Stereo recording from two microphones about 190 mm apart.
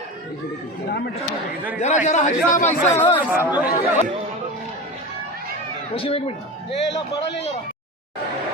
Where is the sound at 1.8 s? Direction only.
40° left (ahead or behind).